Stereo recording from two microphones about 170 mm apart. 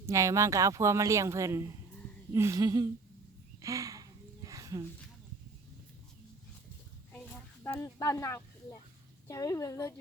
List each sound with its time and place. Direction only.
0.0 s speech: 20° right (ahead or behind)
2.3 s a sound: 15° right (ahead or behind)
7.6 s a woman's voice: 15° left (ahead or behind)